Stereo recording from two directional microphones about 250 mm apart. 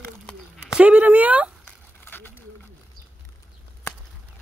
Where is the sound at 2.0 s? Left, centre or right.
Centre.